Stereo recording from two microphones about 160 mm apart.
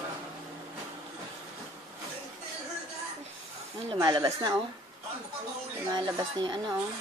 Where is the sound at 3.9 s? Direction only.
25° right (ahead or behind).